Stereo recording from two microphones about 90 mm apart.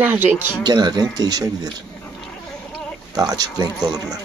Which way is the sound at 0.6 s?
50° right (ahead or behind).